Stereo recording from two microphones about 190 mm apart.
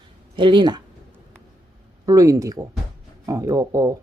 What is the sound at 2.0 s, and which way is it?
Speech, 20° right (ahead or behind).